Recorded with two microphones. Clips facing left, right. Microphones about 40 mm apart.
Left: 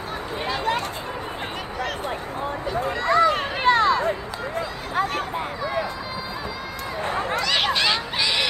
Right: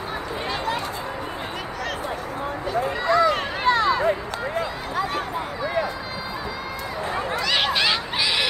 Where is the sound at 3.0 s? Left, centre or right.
Left.